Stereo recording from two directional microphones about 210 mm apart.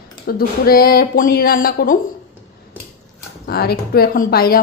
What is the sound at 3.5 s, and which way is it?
A woman's voice, 50° left (ahead or behind).